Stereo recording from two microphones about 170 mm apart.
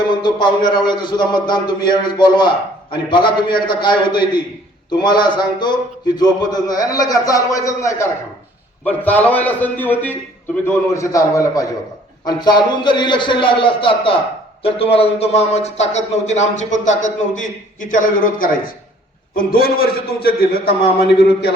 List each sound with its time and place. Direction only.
0.1 s a man's voice: 25° left (ahead or behind); by 21.5 s 65° left (ahead or behind)